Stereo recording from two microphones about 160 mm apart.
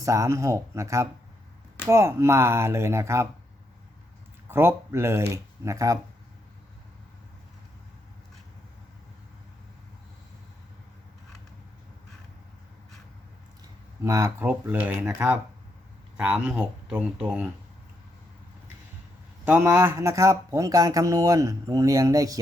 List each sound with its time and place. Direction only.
0.0 s speech: 20° right (ahead or behind)
4.4 s speech: 15° right (ahead or behind)
14.0 s speech: 20° right (ahead or behind)
19.5 s speech: 10° right (ahead or behind)